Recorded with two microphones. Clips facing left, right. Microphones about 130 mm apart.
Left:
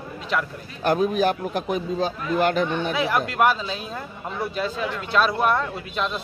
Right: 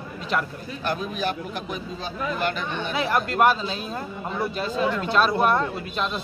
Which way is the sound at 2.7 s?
5° left (ahead or behind).